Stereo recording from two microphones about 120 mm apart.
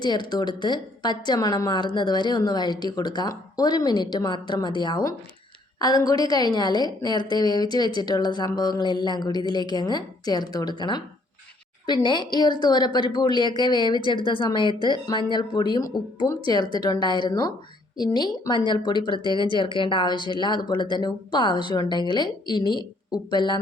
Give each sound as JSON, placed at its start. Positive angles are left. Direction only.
{"t": 0.0, "sound": "a woman's voice", "side_deg": 35}